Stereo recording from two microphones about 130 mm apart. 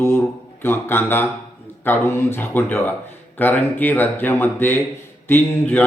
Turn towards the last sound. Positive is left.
turn(degrees=15)  # may be behind; listen again after turning